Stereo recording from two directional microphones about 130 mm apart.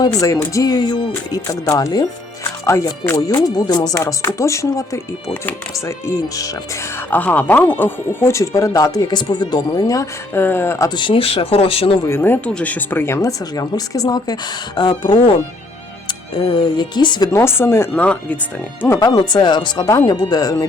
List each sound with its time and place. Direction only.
0.0 s speech: 25° left (ahead or behind)
1.1 s speech: 25° left (ahead or behind)
7.1 s speech: 10° left (ahead or behind)
10.9 s speech: 40° left (ahead or behind)
12.0 s speech: 20° left (ahead or behind); by 17.2 s 35° left (ahead or behind)
17.3 s speech: 20° left (ahead or behind)
18.9 s speech: 35° left (ahead or behind)